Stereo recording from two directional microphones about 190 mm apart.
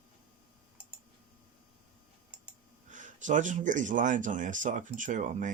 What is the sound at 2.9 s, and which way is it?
Speech, 40° right (ahead or behind).